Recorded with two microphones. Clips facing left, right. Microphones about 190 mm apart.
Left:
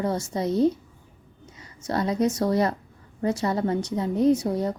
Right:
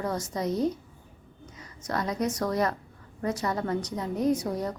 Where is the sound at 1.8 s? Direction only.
30° left (ahead or behind).